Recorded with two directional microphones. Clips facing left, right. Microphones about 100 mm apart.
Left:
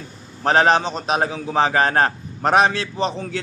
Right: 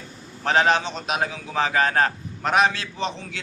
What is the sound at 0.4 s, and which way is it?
A man's voice, 40° left (ahead or behind).